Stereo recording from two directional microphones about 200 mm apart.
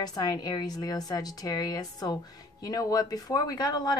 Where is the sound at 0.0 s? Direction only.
20° left (ahead or behind).